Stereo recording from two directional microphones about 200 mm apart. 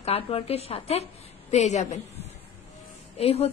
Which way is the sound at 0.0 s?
30° left (ahead or behind).